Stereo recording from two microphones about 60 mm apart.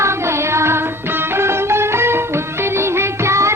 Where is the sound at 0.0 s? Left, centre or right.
Right.